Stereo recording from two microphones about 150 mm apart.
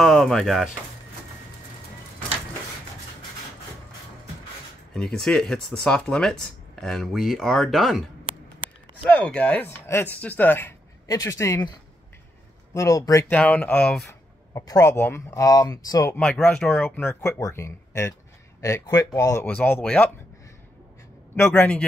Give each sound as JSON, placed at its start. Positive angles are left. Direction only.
{"t": 0.0, "sound": "speech", "side_deg": 0}
{"t": 4.9, "sound": "speech", "side_deg": 5}
{"t": 9.0, "sound": "speech", "side_deg": 10}
{"t": 12.7, "sound": "speech", "side_deg": 20}
{"t": 13.3, "sound": "speech", "side_deg": 10}
{"t": 14.0, "sound": "speech", "side_deg": 25}
{"t": 16.2, "sound": "speech", "side_deg": 10}
{"t": 19.4, "sound": "speech", "side_deg": 10}
{"t": 21.5, "sound": "speech", "side_deg": 5}